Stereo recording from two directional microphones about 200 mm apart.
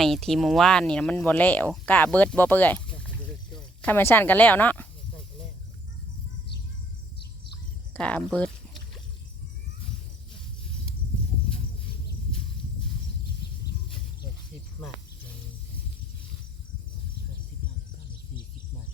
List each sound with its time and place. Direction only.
0.0 s speech: centre (ahead or behind)
7.9 s speech: 5° left (ahead or behind)